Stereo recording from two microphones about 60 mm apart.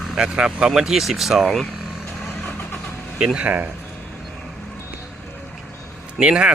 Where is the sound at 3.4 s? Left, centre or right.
Right.